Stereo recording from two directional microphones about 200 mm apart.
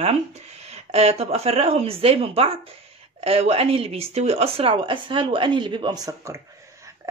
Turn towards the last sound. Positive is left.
turn(degrees=-15)  # may be behind; listen again after turning